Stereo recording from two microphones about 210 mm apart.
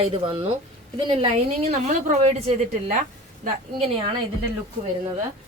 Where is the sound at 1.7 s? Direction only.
35° right (ahead or behind).